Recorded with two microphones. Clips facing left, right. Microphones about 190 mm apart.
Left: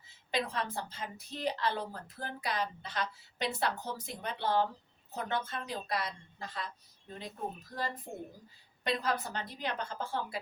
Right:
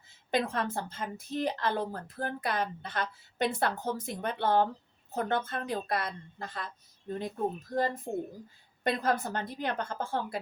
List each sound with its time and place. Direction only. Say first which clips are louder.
0.3 s a woman's voice: right 5 dB; 50° right (ahead or behind)
8.8 s a woman's voice: right 4 dB; 50° right (ahead or behind)